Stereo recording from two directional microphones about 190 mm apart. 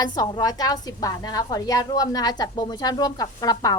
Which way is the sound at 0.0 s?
20° left (ahead or behind).